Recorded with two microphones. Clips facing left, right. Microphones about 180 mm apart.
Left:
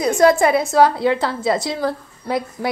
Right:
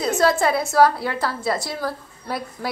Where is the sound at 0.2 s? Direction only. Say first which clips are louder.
Left 6 dB; 15° left (ahead or behind).